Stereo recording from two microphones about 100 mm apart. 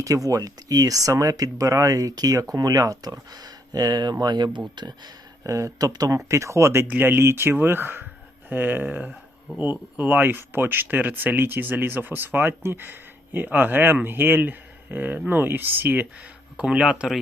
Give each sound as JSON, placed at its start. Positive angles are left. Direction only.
{"t": 0.0, "sound": "speech", "side_deg": -35}
{"t": 5.4, "sound": "speech", "side_deg": -30}